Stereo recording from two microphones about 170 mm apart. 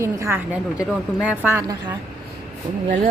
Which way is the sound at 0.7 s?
5° right (ahead or behind).